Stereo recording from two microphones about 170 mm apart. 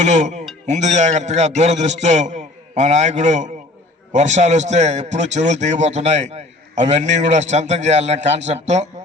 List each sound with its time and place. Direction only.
0.0 s music: 45° right (ahead or behind)
0.7 s a man's voice: 45° right (ahead or behind)